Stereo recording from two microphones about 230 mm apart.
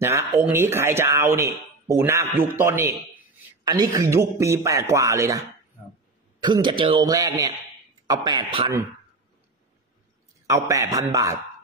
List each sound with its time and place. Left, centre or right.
0.0 s speech: centre
6.4 s a man's voice: centre
10.4 s speech: centre